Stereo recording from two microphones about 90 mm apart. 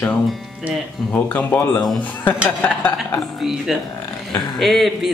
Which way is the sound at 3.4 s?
Centre (ahead or behind).